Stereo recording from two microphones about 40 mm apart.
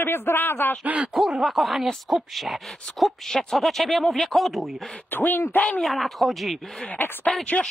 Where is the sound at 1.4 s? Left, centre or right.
Centre.